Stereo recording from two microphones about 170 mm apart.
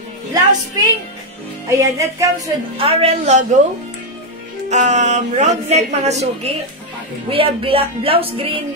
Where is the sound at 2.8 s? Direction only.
35° right (ahead or behind).